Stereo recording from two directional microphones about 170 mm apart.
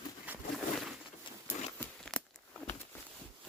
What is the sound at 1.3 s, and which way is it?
Patter, 30° left (ahead or behind).